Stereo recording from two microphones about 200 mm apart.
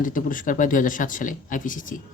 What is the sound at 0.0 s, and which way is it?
Speech, 40° left (ahead or behind).